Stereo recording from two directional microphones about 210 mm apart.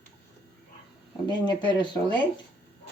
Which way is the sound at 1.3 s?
20° left (ahead or behind).